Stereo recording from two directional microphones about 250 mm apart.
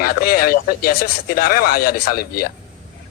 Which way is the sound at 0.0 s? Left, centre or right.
Left.